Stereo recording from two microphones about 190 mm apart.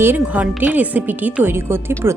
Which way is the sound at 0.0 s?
10° right (ahead or behind).